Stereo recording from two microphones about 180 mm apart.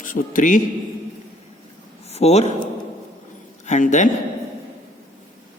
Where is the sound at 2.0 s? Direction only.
35° left (ahead or behind).